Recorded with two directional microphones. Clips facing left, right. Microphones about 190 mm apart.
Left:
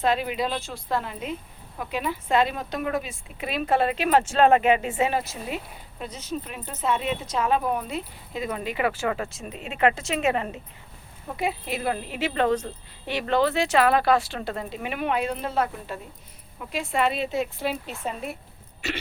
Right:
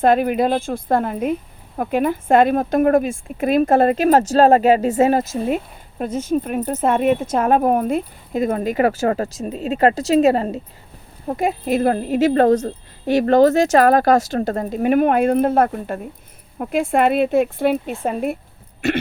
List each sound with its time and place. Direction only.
0.0 s speech: 50° right (ahead or behind)